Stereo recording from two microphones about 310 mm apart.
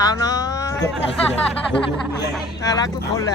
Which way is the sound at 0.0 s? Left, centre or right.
Centre.